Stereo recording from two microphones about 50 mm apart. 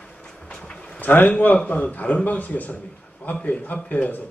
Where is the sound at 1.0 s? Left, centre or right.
Left.